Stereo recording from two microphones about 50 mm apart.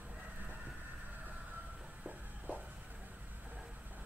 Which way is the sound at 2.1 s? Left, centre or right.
Right.